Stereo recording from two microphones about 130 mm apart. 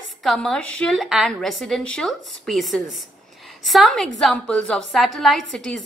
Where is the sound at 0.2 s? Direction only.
Centre (ahead or behind).